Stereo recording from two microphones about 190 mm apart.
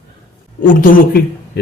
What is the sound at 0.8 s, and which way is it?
Speech, 50° left (ahead or behind).